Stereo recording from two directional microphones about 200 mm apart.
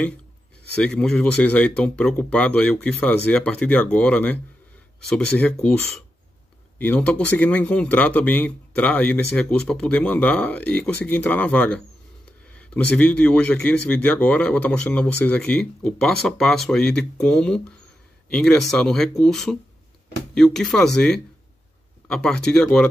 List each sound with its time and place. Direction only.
0.7 s a man's voice: 5° left (ahead or behind)